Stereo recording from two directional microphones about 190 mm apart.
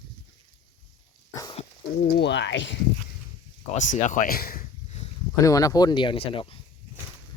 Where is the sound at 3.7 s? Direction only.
40° left (ahead or behind).